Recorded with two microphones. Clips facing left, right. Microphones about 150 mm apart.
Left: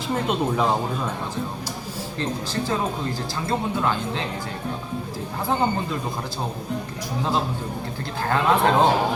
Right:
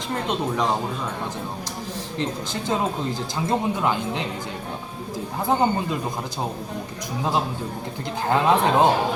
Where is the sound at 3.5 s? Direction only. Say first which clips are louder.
Right 1 dB; 15° right (ahead or behind).